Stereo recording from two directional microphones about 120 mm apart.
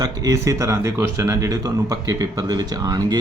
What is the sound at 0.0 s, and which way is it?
Speech, 30° right (ahead or behind).